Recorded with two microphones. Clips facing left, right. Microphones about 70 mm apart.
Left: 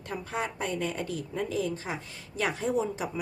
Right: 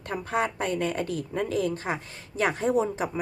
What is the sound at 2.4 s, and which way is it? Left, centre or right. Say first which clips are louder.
Speech: right 4 dB; right.